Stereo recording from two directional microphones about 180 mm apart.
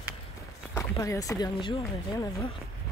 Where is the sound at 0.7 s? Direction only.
15° left (ahead or behind).